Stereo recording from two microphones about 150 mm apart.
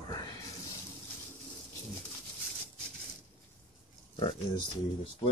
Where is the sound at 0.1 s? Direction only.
25° left (ahead or behind).